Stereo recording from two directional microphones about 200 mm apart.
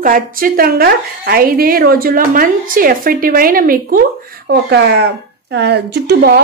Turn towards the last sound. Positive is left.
turn(degrees=-55)  # may be behind; listen again after turning